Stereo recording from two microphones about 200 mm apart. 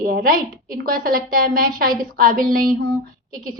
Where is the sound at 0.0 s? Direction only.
45° right (ahead or behind).